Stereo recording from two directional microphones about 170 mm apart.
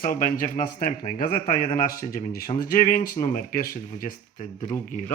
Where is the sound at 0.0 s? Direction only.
55° left (ahead or behind).